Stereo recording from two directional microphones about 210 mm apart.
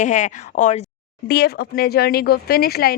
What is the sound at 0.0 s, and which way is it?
Speech, 35° left (ahead or behind).